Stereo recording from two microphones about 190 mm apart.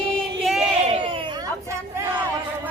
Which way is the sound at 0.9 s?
30° right (ahead or behind).